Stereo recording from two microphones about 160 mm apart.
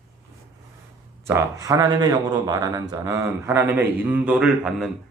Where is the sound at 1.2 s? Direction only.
20° right (ahead or behind); by 4.9 s centre (ahead or behind).